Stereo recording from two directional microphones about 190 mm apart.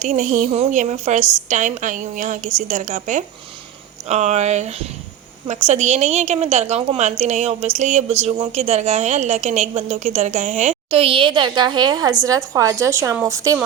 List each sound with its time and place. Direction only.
0.0 s a woman's voice: 40° right (ahead or behind); by 13.6 s 15° right (ahead or behind)